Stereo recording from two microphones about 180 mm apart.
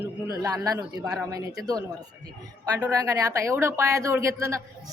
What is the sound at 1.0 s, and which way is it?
Speech, centre (ahead or behind).